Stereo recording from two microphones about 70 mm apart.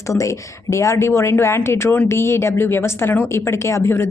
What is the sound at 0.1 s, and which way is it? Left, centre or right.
A woman's voice, left.